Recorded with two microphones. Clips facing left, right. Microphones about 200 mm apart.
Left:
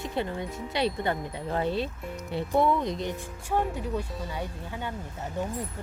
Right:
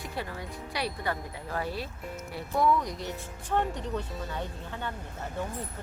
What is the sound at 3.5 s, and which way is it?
Speech, 10° left (ahead or behind).